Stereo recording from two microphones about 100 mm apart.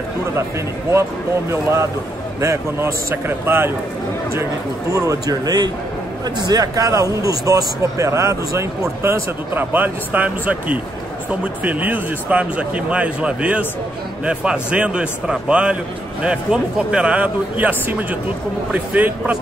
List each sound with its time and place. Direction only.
1.5 s a man's voice: 30° right (ahead or behind)
4.9 s a man's voice: 35° right (ahead or behind); by 19.3 s 15° right (ahead or behind)